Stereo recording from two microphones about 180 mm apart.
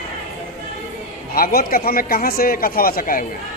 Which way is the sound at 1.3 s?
55° left (ahead or behind).